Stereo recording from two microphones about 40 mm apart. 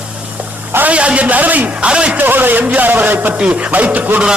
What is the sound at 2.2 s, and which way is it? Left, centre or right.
Speech, right.